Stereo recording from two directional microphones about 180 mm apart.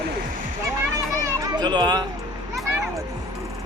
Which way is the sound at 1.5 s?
25° right (ahead or behind).